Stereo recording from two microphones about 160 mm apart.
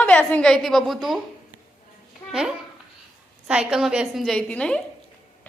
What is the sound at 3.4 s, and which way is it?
A woman's voice, 5° right (ahead or behind).